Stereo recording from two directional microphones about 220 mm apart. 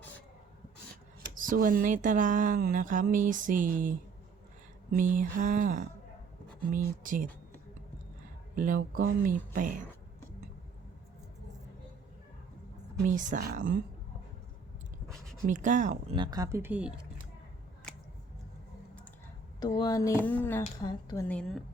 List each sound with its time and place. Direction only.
1.4 s speech: 40° right (ahead or behind)
8.5 s speech: 35° right (ahead or behind)
13.1 s speech: 35° right (ahead or behind)
15.4 s speech: 35° right (ahead or behind)
16.1 s speech: 20° right (ahead or behind)
19.5 s a sound: 20° left (ahead or behind)
21.2 s a woman's voice: 5° left (ahead or behind)